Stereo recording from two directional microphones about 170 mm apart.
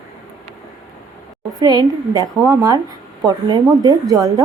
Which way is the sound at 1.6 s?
20° right (ahead or behind).